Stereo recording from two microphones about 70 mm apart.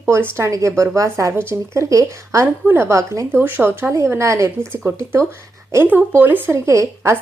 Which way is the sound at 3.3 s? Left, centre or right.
Right.